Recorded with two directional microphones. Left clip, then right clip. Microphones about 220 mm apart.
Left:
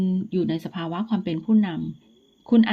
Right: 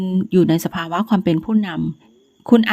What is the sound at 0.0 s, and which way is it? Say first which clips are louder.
Speech: right 9 dB; 30° right (ahead or behind).